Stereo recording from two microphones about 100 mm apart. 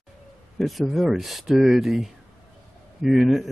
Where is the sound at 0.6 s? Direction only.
Centre (ahead or behind).